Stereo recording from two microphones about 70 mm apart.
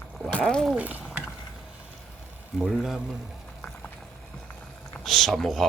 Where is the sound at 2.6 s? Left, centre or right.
Centre.